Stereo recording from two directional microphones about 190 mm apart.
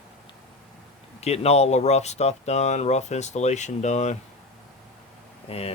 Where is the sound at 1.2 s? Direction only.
35° left (ahead or behind).